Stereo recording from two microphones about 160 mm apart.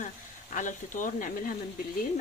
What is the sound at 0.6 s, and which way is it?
Speech, 55° left (ahead or behind).